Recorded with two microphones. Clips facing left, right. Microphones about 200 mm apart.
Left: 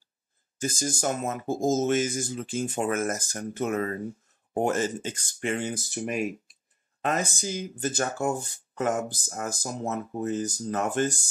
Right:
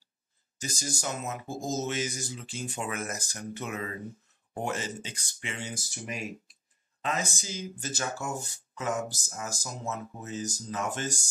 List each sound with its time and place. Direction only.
0.6 s speech: 50° left (ahead or behind)